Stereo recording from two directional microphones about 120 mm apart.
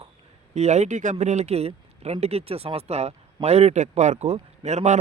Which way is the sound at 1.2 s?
75° right (ahead or behind).